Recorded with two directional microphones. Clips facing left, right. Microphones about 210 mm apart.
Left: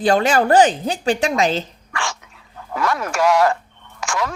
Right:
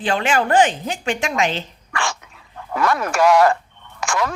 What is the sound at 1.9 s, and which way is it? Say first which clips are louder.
Dog: right 2 dB; 55° right (ahead or behind).